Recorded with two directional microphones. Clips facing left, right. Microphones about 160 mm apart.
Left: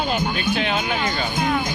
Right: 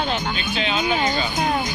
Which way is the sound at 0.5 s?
50° left (ahead or behind).